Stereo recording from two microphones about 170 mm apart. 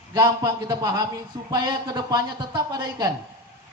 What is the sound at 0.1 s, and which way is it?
Speech, 20° right (ahead or behind).